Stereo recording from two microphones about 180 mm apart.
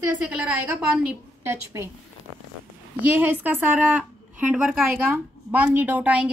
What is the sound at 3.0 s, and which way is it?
A woman's voice, 10° right (ahead or behind).